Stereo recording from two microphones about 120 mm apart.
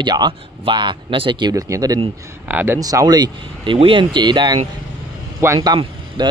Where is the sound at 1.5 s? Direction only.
30° right (ahead or behind).